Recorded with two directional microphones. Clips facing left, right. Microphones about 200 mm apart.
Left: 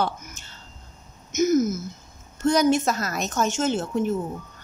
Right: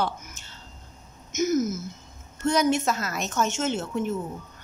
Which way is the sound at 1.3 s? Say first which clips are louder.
Left 4 dB; 45° left (ahead or behind).